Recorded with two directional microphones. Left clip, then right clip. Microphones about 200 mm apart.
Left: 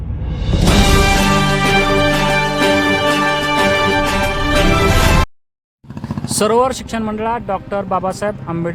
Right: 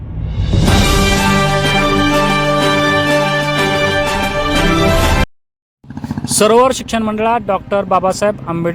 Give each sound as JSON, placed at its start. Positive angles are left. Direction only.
{"t": 0.5, "sound": "music", "side_deg": 0}
{"t": 6.2, "sound": "speech", "side_deg": -20}